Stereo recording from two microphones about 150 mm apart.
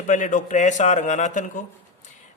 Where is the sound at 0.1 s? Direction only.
60° left (ahead or behind).